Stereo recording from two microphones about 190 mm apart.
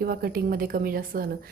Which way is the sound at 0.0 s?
50° right (ahead or behind).